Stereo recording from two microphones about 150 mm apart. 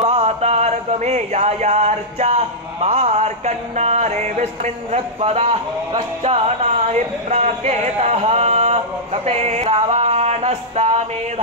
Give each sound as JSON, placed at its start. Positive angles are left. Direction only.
{"t": 0.0, "sound": "music", "side_deg": -45}
{"t": 4.9, "sound": "speech", "side_deg": -45}